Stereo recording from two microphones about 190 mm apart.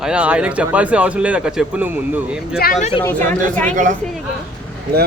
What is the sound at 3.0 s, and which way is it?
Speech, 10° left (ahead or behind).